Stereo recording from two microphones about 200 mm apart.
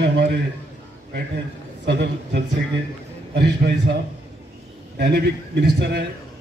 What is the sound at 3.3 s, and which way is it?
Speech, 60° right (ahead or behind).